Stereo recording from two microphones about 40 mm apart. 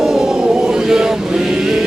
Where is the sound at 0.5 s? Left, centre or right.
Right.